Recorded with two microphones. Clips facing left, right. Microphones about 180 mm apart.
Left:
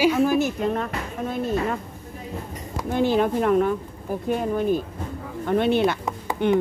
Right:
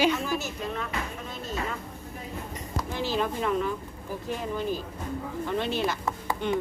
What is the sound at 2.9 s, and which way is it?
Speech, 55° left (ahead or behind).